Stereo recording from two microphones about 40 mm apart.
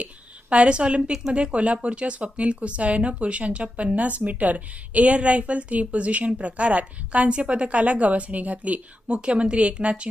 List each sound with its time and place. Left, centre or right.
0.5 s a woman's voice: right